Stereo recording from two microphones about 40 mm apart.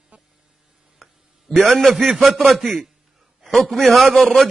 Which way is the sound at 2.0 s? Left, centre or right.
Centre.